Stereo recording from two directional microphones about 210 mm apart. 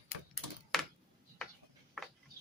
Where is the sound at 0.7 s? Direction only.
Centre (ahead or behind).